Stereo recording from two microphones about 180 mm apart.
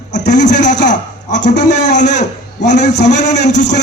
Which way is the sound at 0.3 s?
45° left (ahead or behind).